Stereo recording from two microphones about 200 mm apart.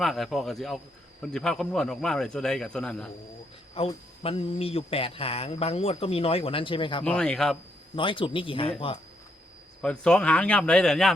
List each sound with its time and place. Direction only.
0.0 s a man's voice: centre (ahead or behind)
3.8 s speech: 30° left (ahead or behind)
7.0 s a man's voice: 5° left (ahead or behind)
7.9 s speech: 25° left (ahead or behind)
9.8 s a man's voice: 5° left (ahead or behind)